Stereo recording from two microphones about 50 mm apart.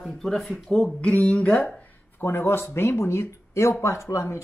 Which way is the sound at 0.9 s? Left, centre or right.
Left.